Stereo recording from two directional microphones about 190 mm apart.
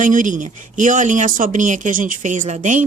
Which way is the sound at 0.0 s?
45° right (ahead or behind).